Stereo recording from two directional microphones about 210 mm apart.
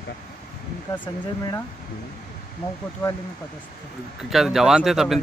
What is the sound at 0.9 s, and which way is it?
Speech, 10° left (ahead or behind).